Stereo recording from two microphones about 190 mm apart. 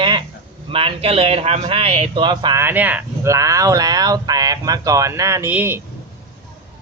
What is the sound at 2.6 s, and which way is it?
Speech, 10° right (ahead or behind).